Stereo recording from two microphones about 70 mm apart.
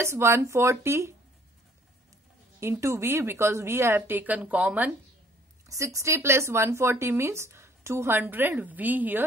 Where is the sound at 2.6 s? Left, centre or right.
Right.